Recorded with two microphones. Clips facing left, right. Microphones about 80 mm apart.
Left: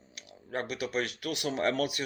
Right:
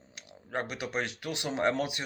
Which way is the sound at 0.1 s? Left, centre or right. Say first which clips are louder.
Right 1 dB; right.